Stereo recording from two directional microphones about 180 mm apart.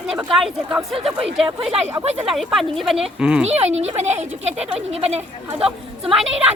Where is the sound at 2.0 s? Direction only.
35° right (ahead or behind).